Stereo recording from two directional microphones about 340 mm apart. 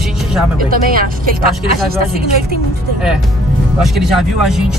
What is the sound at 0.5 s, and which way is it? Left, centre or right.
Speech, right.